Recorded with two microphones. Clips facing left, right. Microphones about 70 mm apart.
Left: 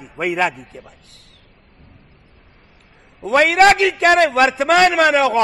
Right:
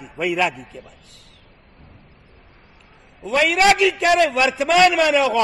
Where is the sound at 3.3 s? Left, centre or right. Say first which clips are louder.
Left 4 dB; left.